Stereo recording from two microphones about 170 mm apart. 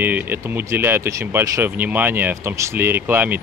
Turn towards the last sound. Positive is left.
turn(degrees=-10)  # may be behind; listen again after turning